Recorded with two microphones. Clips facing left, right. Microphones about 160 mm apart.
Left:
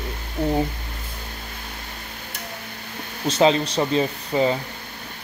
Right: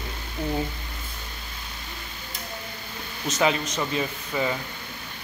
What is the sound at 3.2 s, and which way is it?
Speech, 30° left (ahead or behind).